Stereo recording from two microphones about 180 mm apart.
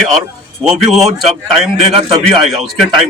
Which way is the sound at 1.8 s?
35° right (ahead or behind).